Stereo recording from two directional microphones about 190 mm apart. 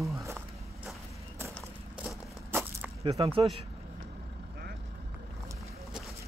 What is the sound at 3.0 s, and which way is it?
Speech, 25° right (ahead or behind).